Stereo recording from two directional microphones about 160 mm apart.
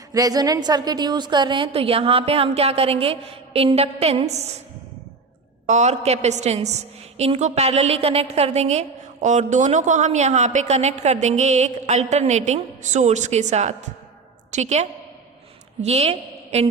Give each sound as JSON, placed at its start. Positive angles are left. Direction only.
{"t": 0.1, "sound": "a woman's voice", "side_deg": -25}
{"t": 5.6, "sound": "a woman's voice", "side_deg": -45}